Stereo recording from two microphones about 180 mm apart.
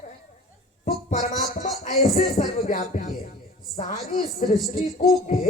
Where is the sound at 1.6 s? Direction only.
45° left (ahead or behind).